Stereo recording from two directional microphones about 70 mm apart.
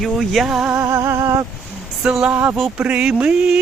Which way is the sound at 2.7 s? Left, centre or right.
Centre.